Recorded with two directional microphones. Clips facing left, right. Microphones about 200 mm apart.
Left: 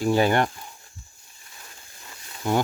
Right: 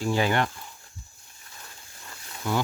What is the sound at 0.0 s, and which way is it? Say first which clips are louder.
Cricket: left 4 dB; 45° left (ahead or behind).